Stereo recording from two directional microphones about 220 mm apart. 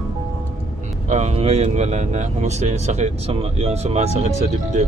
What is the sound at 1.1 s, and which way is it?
Speech, 30° right (ahead or behind).